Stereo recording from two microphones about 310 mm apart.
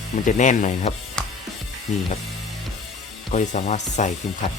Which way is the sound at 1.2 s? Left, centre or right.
Centre.